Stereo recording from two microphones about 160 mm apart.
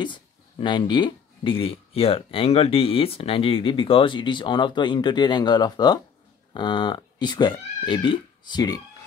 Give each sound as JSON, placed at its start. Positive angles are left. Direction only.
{"t": 0.0, "sound": "speech", "side_deg": 30}